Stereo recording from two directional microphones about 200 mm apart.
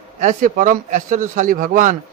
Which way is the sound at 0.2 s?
40° right (ahead or behind).